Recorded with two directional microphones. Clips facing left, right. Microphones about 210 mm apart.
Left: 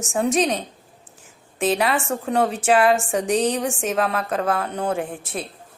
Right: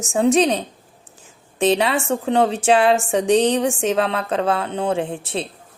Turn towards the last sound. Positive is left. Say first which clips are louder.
# right 4 dB
turn(degrees=-25)  # may be behind; listen again after turning